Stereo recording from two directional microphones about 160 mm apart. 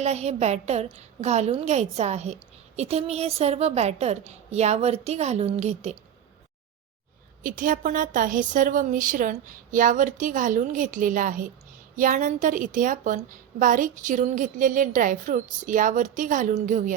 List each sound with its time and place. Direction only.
0.0 s a woman's voice: 45° right (ahead or behind)
7.4 s a woman's voice: 55° right (ahead or behind)